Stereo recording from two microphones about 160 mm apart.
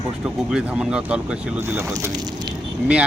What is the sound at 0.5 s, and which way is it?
Speech, 5° right (ahead or behind).